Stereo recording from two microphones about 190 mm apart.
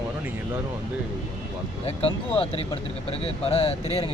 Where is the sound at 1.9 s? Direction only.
30° left (ahead or behind).